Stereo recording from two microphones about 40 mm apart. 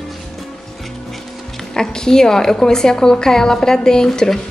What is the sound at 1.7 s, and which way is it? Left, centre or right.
A woman's voice, centre.